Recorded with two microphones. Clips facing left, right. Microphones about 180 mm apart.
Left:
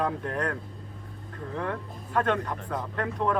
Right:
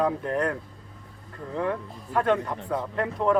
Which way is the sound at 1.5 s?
5° right (ahead or behind).